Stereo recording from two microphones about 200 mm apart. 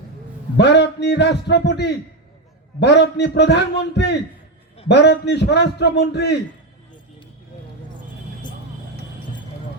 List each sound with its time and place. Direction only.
0.5 s a man's voice: 60° left (ahead or behind)